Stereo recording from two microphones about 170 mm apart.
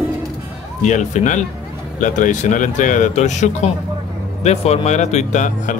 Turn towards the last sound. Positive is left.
turn(degrees=45)  # may be behind; listen again after turning